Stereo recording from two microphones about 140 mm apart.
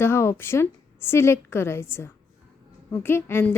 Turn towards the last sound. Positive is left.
turn(degrees=15)  # may be behind; listen again after turning